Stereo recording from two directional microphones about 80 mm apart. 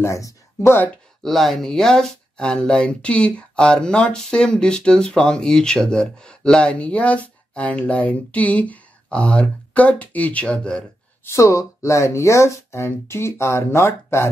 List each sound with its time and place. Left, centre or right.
0.0 s speech: left
1.2 s speech: centre
11.2 s speech: left